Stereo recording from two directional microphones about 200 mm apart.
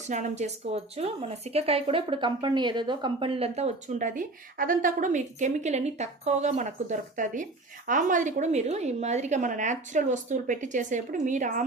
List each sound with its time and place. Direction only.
0.1 s a woman's voice: 35° right (ahead or behind)